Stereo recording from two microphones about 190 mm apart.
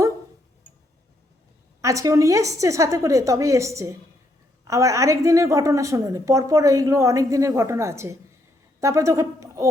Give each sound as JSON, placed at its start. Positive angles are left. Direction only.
{"t": 1.8, "sound": "a woman's voice", "side_deg": -15}